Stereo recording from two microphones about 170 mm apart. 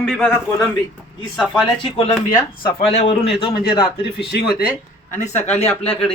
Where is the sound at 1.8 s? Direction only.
30° left (ahead or behind).